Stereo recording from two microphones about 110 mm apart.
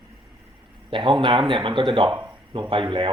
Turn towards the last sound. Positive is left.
turn(degrees=-50)  # may be behind; listen again after turning